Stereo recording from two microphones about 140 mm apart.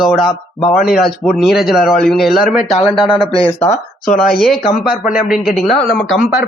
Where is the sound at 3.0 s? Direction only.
40° left (ahead or behind).